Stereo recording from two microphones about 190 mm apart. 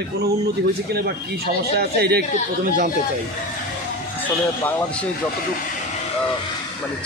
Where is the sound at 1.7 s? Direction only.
55° right (ahead or behind).